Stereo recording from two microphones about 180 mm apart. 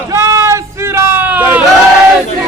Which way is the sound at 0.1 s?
15° right (ahead or behind).